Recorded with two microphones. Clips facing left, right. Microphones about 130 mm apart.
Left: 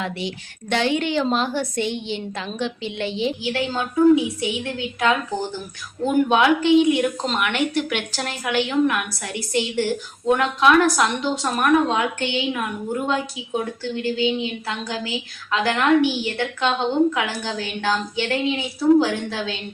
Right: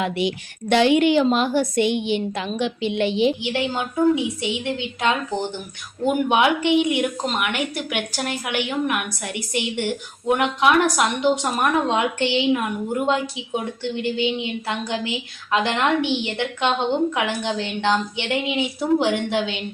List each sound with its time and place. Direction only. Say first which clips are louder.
0.0 s a woman's voice: right 5 dB; 15° right (ahead or behind)